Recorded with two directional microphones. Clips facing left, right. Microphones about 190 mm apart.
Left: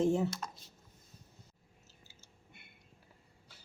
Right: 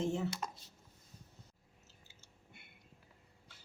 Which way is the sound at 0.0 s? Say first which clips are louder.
Left 6 dB; 35° left (ahead or behind).